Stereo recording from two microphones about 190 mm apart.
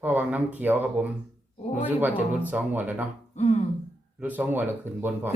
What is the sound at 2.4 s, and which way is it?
Speech, 10° right (ahead or behind).